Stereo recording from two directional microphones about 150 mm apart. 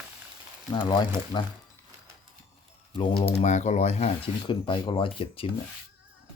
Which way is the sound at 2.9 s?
40° left (ahead or behind).